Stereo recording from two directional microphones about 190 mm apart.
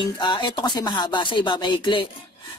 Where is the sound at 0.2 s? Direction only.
25° left (ahead or behind).